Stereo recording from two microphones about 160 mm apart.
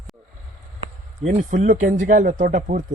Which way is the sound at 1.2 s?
45° right (ahead or behind).